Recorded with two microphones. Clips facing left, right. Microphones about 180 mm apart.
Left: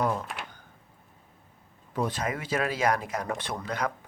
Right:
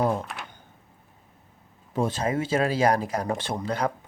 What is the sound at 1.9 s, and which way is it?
Speech, 25° right (ahead or behind).